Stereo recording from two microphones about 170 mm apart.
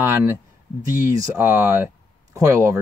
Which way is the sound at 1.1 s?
10° right (ahead or behind).